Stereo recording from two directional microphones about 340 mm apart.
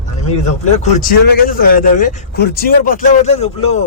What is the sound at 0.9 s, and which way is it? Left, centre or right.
Speech, left.